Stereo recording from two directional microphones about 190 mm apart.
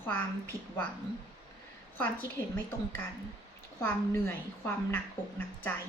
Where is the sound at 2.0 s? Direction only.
10° left (ahead or behind).